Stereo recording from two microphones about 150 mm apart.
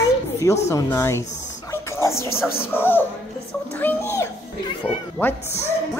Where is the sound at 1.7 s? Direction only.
20° left (ahead or behind).